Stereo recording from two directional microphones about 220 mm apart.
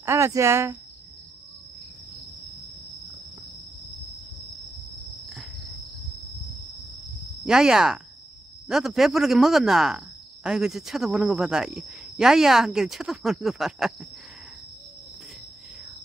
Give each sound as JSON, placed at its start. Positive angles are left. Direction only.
{"t": 0.0, "sound": "speech", "side_deg": -15}
{"t": 4.9, "sound": "cricket", "side_deg": 0}
{"t": 7.4, "sound": "speech", "side_deg": 0}